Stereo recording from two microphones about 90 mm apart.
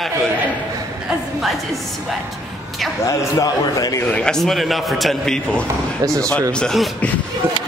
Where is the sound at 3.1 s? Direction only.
40° left (ahead or behind).